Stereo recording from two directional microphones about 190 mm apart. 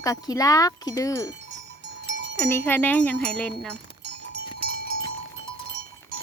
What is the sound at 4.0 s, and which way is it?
Goat, 60° right (ahead or behind).